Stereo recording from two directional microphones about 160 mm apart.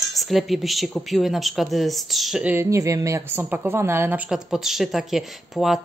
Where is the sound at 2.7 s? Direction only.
20° right (ahead or behind).